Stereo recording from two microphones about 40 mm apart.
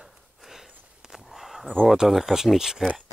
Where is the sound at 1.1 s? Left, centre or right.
Centre.